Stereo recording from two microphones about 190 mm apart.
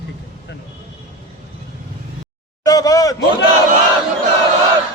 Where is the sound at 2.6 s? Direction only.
20° left (ahead or behind).